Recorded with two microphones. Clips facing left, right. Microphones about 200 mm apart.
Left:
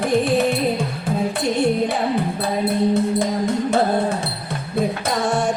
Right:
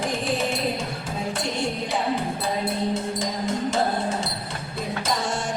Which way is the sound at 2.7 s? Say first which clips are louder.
Left 7 dB; 60° left (ahead or behind).